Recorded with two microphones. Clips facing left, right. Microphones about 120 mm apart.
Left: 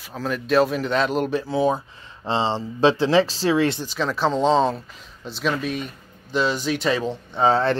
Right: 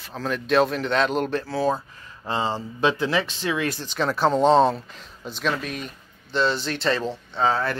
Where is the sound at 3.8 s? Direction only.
Centre (ahead or behind).